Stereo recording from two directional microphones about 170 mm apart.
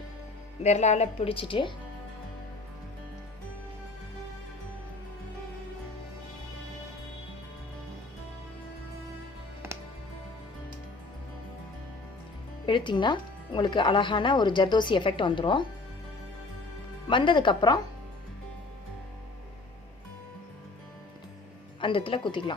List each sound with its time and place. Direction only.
0.6 s a woman's voice: 40° left (ahead or behind)
12.6 s speech: 30° left (ahead or behind)
17.1 s speech: 30° left (ahead or behind)
21.8 s speech: 30° left (ahead or behind)